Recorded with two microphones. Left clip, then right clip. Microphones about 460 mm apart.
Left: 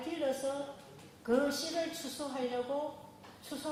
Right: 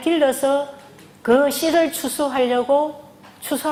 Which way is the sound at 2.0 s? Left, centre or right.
Right.